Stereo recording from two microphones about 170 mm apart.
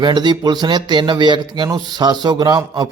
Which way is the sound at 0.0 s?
25° right (ahead or behind).